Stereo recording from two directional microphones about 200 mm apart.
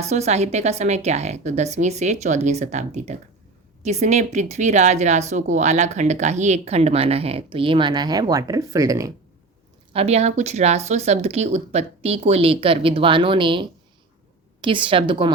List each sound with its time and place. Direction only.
0.0 s speech: 35° right (ahead or behind); by 9.1 s 15° right (ahead or behind)
9.9 s speech: 30° right (ahead or behind)